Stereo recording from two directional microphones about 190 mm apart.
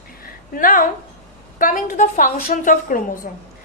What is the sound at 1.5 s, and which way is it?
Speech, 45° left (ahead or behind).